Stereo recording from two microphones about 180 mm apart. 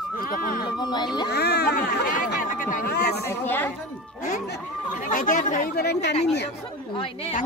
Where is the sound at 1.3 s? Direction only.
65° left (ahead or behind).